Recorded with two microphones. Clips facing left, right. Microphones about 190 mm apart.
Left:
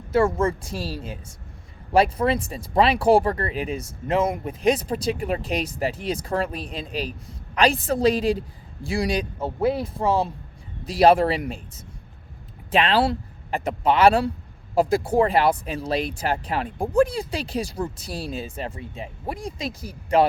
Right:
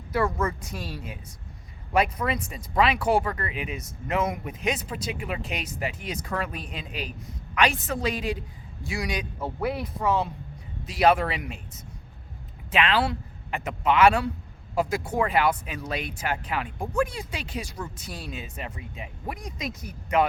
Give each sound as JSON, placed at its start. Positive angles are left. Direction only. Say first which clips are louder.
{"t": 0.1, "sound": "a man's voice", "louder": "left 6 dB", "side_deg": 25}
{"t": 12.7, "sound": "speech", "louder": "left 4 dB", "side_deg": 35}